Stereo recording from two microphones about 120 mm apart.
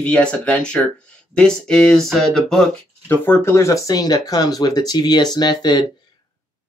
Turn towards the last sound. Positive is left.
turn(degrees=40)  # may be behind; listen again after turning